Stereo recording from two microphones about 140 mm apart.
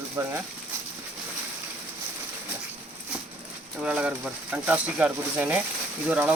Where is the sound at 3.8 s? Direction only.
5° right (ahead or behind).